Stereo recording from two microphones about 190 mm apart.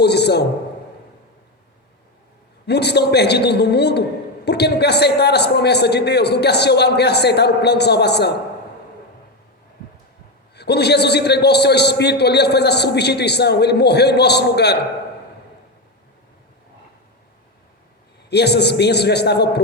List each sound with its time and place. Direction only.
0.0 s speech: 60° left (ahead or behind)
2.6 s a man's voice: 60° left (ahead or behind)
10.5 s a man's voice: 60° left (ahead or behind)
18.3 s a man's voice: 60° left (ahead or behind)